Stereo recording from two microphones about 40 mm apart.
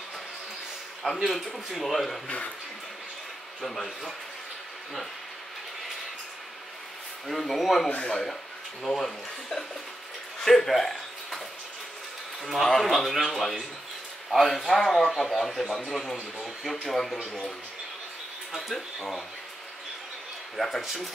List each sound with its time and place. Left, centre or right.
1.0 s a man's voice: centre
2.2 s speech: left
3.6 s speech: centre
7.2 s a man's voice: centre
7.9 s speech: left
8.8 s speech: centre
10.4 s a sound: centre
12.4 s a man's voice: centre
16.8 s speech: centre
20.5 s a man's voice: centre